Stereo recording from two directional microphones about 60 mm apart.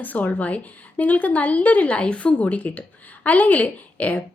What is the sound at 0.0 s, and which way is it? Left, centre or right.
A woman's voice, left.